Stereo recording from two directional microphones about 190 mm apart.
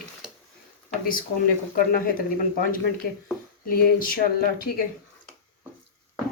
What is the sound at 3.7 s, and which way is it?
Speech, 50° left (ahead or behind).